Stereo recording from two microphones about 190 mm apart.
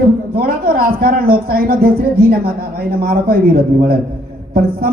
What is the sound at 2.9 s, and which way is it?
Speech, 50° right (ahead or behind).